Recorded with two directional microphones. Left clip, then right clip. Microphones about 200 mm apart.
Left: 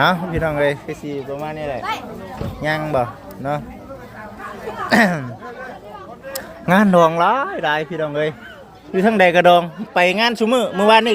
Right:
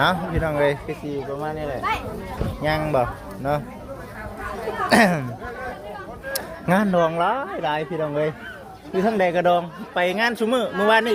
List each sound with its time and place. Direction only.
0.0 s a man's voice: 35° left (ahead or behind); by 3.6 s 15° left (ahead or behind)
4.9 s speech: 5° left (ahead or behind)
6.7 s speech: 20° left (ahead or behind)
9.0 s a man's voice: 35° left (ahead or behind); by 11.1 s 20° left (ahead or behind)